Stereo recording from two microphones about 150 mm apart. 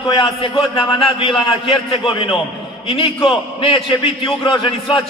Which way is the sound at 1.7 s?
35° left (ahead or behind).